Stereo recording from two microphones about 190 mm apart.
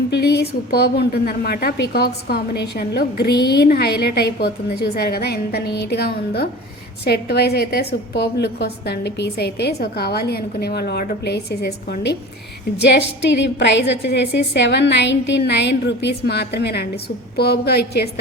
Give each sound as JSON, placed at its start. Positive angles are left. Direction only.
{"t": 0.1, "sound": "a woman's voice", "side_deg": 60}